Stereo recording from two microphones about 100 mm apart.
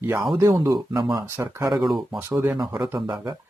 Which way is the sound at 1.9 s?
Centre (ahead or behind).